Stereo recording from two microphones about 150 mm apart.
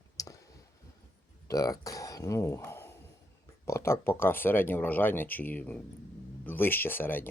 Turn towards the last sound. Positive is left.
turn(degrees=15)  # may be behind; listen again after turning